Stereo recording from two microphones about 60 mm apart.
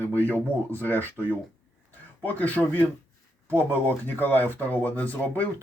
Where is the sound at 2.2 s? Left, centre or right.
Left.